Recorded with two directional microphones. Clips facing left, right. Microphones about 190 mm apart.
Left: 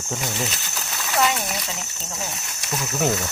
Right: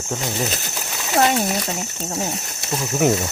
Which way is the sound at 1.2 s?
35° right (ahead or behind).